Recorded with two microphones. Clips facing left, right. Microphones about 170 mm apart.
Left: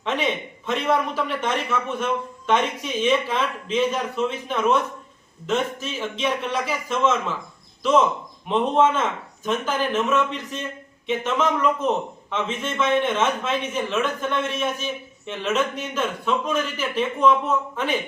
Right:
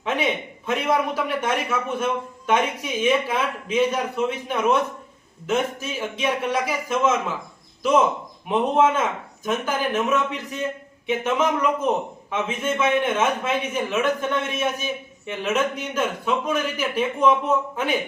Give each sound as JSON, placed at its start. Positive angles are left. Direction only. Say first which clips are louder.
{"t": 0.0, "sound": "speech", "louder": "right 1 dB", "side_deg": -10}